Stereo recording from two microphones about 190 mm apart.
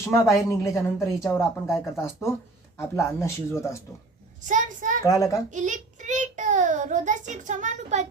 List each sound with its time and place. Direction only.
0.0 s speech: 15° left (ahead or behind)
4.4 s child singing: 40° right (ahead or behind)
5.0 s speech: 15° left (ahead or behind)
5.5 s a child's voice: 40° right (ahead or behind)